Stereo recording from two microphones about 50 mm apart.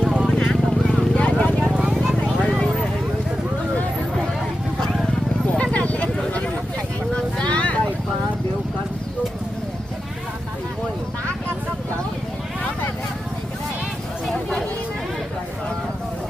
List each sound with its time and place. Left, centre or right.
0.0 s vehicle: centre
0.3 s vehicle: left
0.8 s vehicle: centre
1.1 s vehicle: left
1.5 s vehicle: right
2.2 s a sound: centre
5.7 s a sound: left
7.3 s vehicle: left